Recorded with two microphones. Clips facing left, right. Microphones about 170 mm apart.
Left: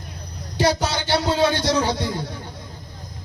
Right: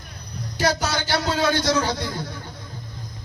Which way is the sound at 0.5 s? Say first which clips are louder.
Left 2 dB; 30° left (ahead or behind).